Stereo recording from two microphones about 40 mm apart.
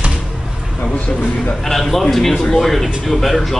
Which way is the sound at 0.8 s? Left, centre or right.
Left.